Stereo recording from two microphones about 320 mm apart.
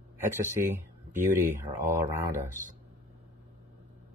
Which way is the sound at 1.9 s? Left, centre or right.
Centre.